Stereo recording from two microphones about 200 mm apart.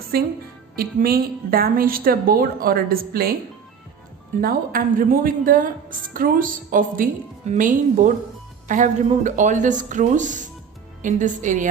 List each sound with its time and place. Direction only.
0.1 s a woman's voice: 50° right (ahead or behind)
4.4 s a woman's voice: 45° right (ahead or behind)